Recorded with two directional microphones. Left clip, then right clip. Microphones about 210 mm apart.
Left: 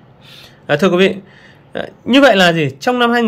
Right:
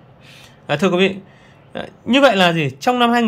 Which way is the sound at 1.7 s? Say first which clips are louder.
Left 4 dB; centre (ahead or behind).